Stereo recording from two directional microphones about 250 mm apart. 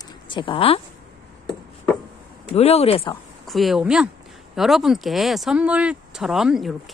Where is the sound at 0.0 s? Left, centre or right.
Centre.